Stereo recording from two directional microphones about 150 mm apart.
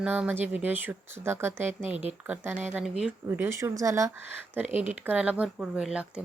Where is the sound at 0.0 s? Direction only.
10° right (ahead or behind).